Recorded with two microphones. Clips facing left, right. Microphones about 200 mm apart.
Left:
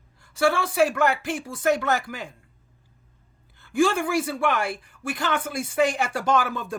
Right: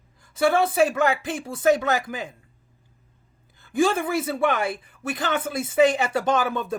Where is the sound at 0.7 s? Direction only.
20° right (ahead or behind).